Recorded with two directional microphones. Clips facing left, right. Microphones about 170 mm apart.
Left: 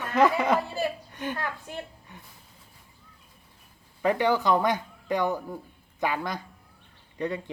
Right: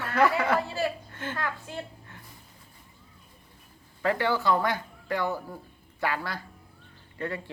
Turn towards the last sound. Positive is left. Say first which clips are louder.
# left 3 dB
turn(degrees=20)  # may be behind; listen again after turning